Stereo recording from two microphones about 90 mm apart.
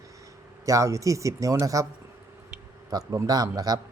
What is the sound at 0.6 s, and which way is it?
A man's voice, 35° right (ahead or behind).